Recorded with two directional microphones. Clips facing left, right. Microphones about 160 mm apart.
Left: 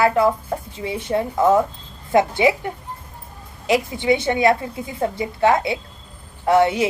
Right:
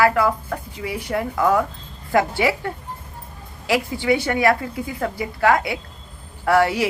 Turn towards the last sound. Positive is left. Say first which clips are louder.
# left 2 dB
turn(degrees=20)  # may be behind; listen again after turning